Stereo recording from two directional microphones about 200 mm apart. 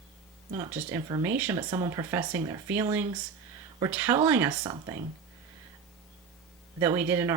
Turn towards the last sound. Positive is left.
turn(degrees=-10)  # may be behind; listen again after turning